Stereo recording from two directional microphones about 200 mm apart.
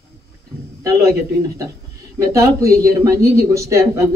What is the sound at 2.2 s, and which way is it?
Speech, 15° right (ahead or behind).